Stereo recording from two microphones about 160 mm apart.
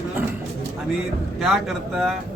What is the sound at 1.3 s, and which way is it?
Speech, centre (ahead or behind).